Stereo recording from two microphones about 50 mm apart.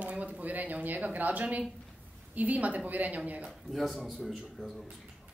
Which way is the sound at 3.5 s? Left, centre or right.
Centre.